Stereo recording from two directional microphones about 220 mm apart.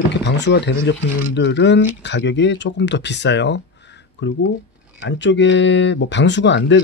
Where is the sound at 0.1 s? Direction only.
50° left (ahead or behind).